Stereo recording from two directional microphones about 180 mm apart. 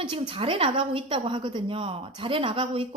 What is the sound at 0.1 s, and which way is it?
A woman's voice, 30° right (ahead or behind).